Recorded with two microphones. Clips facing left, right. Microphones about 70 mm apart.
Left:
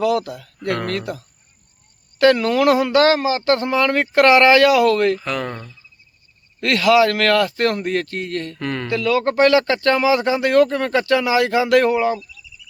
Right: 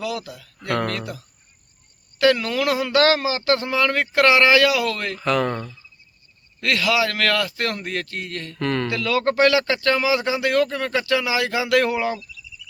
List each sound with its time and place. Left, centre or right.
0.0 s speech: left
2.9 s speech: left
5.1 s speech: centre
6.6 s speech: left
8.5 s speech: centre; by 11.8 s left